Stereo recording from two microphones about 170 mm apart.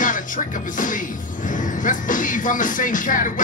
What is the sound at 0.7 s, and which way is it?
Music, 50° left (ahead or behind).